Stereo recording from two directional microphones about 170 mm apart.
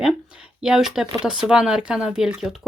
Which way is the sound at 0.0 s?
5° right (ahead or behind).